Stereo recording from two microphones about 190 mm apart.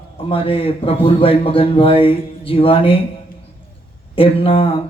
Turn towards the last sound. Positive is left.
turn(degrees=30)  # may be behind; listen again after turning